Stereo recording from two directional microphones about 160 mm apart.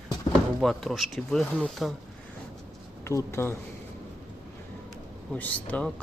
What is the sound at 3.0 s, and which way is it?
Speech, 15° left (ahead or behind).